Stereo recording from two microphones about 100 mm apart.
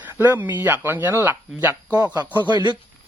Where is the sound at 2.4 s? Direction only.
50° right (ahead or behind).